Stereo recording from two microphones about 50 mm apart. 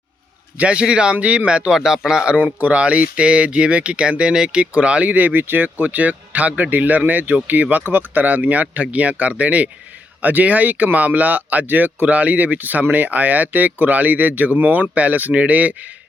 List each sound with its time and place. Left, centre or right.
0.6 s speech: centre
1.7 s speech: centre
2.4 s speech: right
4.6 s speech: right